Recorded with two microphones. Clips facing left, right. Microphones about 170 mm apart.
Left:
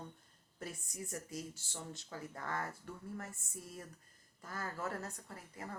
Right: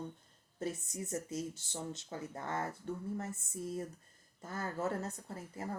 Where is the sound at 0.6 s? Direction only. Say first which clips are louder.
Right 7 dB; 25° right (ahead or behind).